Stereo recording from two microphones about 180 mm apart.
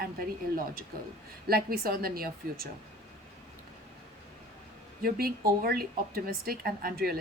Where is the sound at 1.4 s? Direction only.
55° right (ahead or behind).